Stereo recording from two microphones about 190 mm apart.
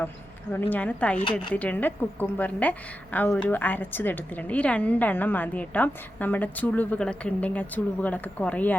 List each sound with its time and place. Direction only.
0.5 s a woman's voice: 10° left (ahead or behind)
1.2 s speech: 25° left (ahead or behind)
1.5 s a woman's voice: 10° left (ahead or behind)